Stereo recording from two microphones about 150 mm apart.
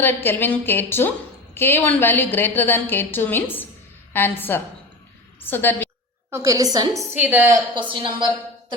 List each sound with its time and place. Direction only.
0.0 s a woman's voice: 15° left (ahead or behind)
6.3 s a woman's voice: 20° right (ahead or behind)
7.8 s a woman's voice: 30° right (ahead or behind)